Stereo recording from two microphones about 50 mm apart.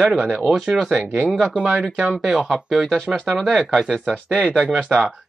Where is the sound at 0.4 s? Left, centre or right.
Centre.